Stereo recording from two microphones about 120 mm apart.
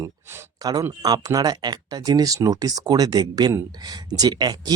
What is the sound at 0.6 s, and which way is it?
Speech, 30° right (ahead or behind).